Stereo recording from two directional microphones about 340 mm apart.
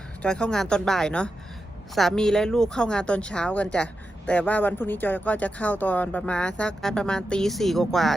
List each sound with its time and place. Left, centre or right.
0.2 s speech: centre